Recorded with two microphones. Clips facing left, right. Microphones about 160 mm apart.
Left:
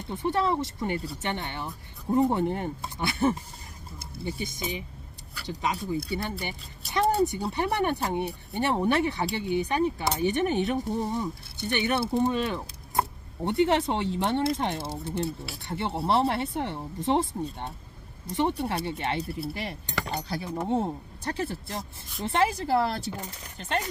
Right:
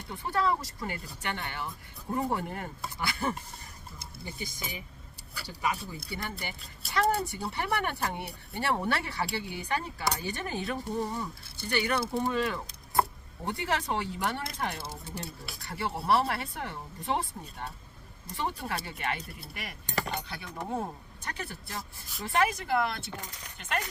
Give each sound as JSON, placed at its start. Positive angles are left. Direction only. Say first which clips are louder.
{"t": 0.1, "sound": "speech", "louder": "left 3 dB", "side_deg": 20}
{"t": 5.9, "sound": "speech", "louder": "left 9 dB", "side_deg": 20}
{"t": 20.6, "sound": "speech", "louder": "left 6 dB", "side_deg": 25}